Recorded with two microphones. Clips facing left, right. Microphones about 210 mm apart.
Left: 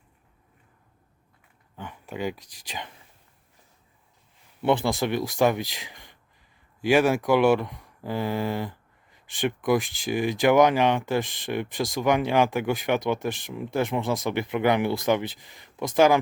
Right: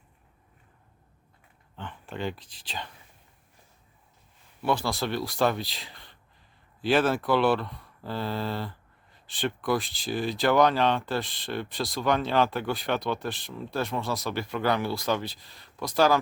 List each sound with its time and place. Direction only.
1.7 s a sound: 10° left (ahead or behind)
2.6 s speech: 15° left (ahead or behind)
4.6 s speech: 20° left (ahead or behind)